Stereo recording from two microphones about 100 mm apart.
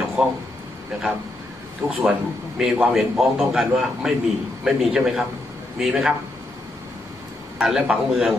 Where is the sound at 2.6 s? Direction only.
5° right (ahead or behind).